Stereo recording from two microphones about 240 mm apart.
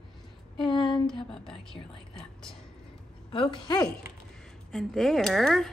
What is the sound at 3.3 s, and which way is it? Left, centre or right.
Speech, centre.